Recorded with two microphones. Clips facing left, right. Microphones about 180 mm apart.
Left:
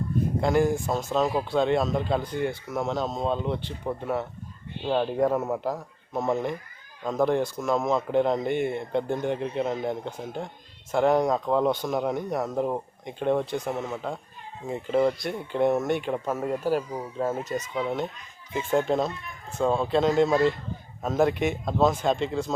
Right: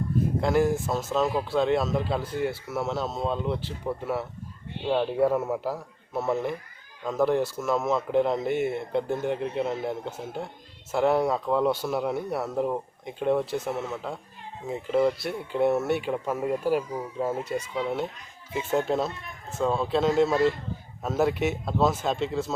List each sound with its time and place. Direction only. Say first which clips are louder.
0.4 s a man's voice: left 1 dB; centre (ahead or behind)